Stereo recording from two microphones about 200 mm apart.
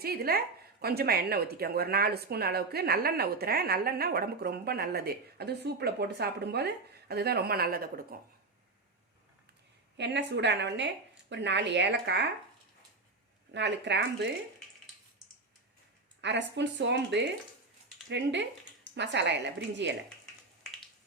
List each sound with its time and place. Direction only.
0.0 s a woman's voice: 50° right (ahead or behind)
10.0 s a woman's voice: 60° right (ahead or behind)
13.5 s a woman's voice: 60° right (ahead or behind)
16.2 s a woman's voice: 60° right (ahead or behind)